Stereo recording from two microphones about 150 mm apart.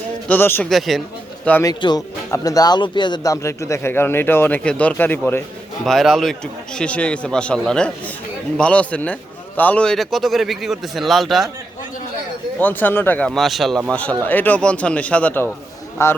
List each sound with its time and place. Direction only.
0.3 s a man's voice: 15° left (ahead or behind)
0.7 s a man's voice: centre (ahead or behind)
1.6 s a man's voice: 25° left (ahead or behind)
5.8 s a man's voice: centre (ahead or behind)
12.5 s a man's voice: 10° left (ahead or behind)